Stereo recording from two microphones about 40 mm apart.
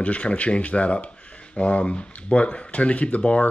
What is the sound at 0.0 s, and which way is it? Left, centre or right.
Speech, left.